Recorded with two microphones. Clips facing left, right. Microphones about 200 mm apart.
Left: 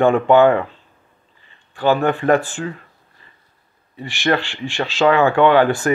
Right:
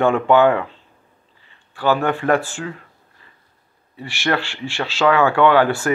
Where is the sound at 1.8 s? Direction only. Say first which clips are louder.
Left 2 dB; 20° left (ahead or behind).